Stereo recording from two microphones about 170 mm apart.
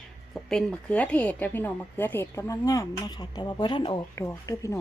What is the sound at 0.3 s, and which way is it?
Speech, centre (ahead or behind).